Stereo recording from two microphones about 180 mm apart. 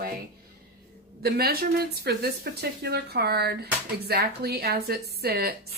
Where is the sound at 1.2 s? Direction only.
60° right (ahead or behind).